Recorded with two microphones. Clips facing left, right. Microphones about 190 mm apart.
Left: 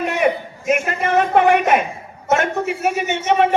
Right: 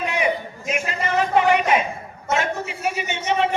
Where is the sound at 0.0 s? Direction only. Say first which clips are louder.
Left 4 dB; 50° left (ahead or behind).